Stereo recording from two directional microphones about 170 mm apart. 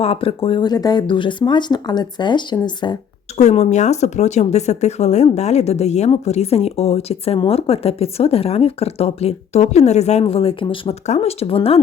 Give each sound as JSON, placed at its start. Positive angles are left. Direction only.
{"t": 0.0, "sound": "speech", "side_deg": 35}
{"t": 3.3, "sound": "speech", "side_deg": 40}